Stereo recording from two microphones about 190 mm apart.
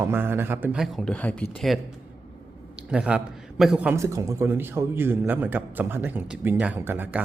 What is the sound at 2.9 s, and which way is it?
A man's voice, 5° right (ahead or behind).